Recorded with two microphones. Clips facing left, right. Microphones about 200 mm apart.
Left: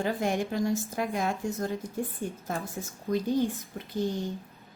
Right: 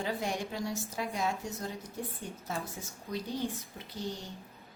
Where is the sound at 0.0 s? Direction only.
50° left (ahead or behind).